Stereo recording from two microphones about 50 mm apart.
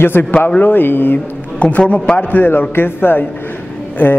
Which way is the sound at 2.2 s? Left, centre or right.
Left.